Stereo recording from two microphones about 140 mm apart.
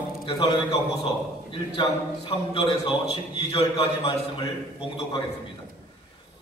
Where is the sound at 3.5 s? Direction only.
45° left (ahead or behind).